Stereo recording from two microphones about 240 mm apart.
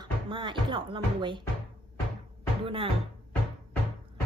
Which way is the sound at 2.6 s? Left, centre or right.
Right.